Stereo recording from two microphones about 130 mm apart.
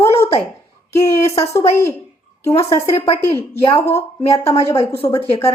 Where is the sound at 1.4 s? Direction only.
20° left (ahead or behind).